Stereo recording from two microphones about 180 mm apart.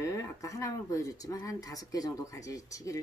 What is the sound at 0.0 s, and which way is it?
Speech, 15° left (ahead or behind).